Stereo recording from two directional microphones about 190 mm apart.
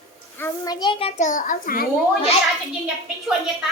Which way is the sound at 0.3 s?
15° left (ahead or behind).